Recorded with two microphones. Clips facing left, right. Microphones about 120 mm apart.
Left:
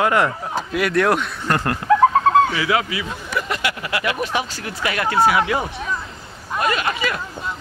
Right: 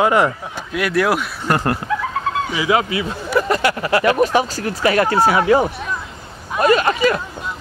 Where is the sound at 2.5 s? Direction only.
15° right (ahead or behind).